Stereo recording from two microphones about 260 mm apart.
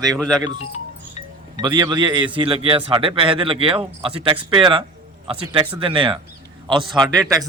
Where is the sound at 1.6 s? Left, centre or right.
Centre.